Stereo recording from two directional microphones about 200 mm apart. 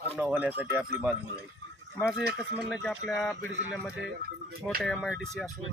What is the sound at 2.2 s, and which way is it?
Speech, 55° right (ahead or behind).